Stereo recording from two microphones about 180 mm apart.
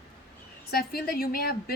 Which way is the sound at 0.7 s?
55° left (ahead or behind).